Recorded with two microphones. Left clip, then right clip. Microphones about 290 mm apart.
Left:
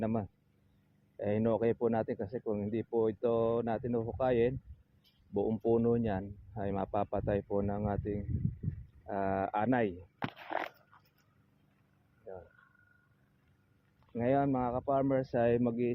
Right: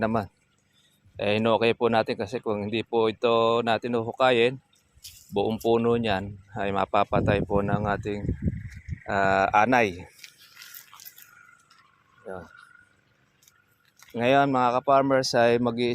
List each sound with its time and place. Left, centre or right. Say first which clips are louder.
0.0 s speech: right 10 dB; right
2.4 s speech: right 8 dB; right
3.0 s speech: right 9 dB; right
14.2 s speech: right 10 dB; right